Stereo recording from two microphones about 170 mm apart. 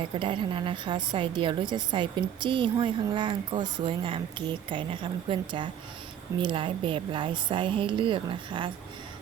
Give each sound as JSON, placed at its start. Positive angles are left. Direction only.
{"t": 0.2, "sound": "a woman's voice", "side_deg": -30}